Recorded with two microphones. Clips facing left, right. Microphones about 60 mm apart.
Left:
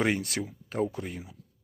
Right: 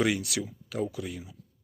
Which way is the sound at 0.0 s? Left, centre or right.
Left.